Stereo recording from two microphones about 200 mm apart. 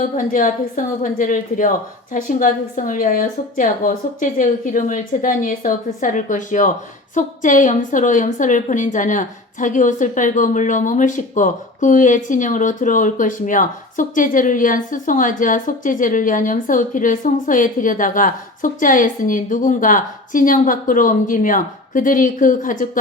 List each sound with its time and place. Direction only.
0.0 s a woman's voice: 40° left (ahead or behind)